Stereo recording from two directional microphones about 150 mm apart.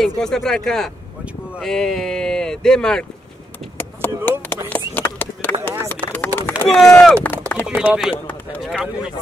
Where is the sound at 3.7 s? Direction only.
15° left (ahead or behind).